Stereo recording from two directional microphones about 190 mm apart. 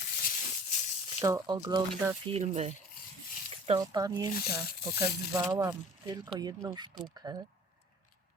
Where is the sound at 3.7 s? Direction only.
20° right (ahead or behind).